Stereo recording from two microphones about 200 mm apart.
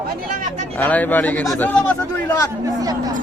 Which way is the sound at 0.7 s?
10° left (ahead or behind).